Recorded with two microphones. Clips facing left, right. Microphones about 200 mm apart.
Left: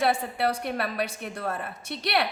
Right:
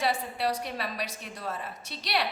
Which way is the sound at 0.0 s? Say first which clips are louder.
Left 4 dB; 55° left (ahead or behind).